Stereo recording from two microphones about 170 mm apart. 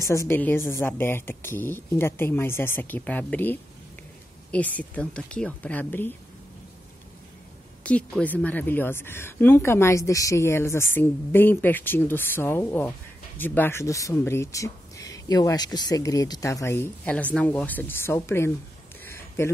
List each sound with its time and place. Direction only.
0.0 s speech: 20° left (ahead or behind)
7.8 s speech: 5° left (ahead or behind)
19.0 s a sound: 15° left (ahead or behind)